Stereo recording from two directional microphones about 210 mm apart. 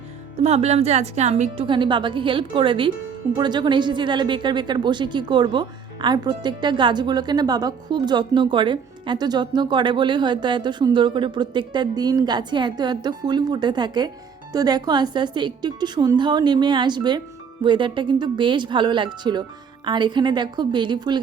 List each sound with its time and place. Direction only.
0.4 s a woman's voice: 30° right (ahead or behind)